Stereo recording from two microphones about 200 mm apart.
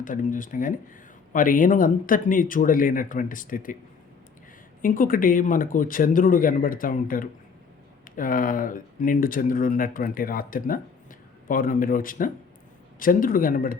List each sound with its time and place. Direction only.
0.0 s speech: 40° left (ahead or behind)
4.8 s speech: 45° left (ahead or behind)